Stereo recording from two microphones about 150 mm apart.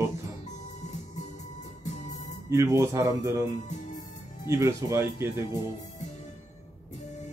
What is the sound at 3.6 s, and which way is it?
Music, 50° left (ahead or behind).